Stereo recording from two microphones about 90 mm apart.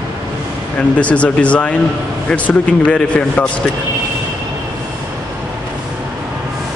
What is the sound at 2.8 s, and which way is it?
Speech, 15° left (ahead or behind).